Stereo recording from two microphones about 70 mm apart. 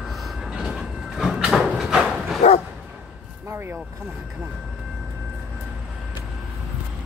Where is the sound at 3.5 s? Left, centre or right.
Right.